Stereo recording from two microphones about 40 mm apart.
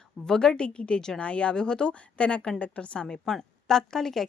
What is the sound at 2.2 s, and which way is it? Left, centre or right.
A woman's voice, left.